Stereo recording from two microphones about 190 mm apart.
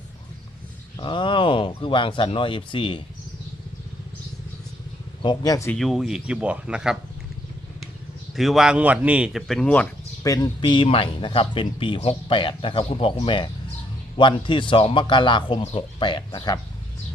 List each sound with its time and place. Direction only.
0.9 s speech: 25° left (ahead or behind)
5.2 s speech: 20° left (ahead or behind)
5.7 s speech: centre (ahead or behind)
8.4 s speech: centre (ahead or behind)
10.2 s speech: 20° left (ahead or behind)